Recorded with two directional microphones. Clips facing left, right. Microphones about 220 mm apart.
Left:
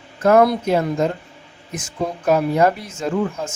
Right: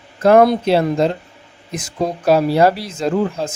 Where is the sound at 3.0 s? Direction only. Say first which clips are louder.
Right 3 dB; 35° right (ahead or behind).